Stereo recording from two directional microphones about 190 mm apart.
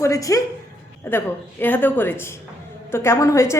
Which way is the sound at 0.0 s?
15° left (ahead or behind).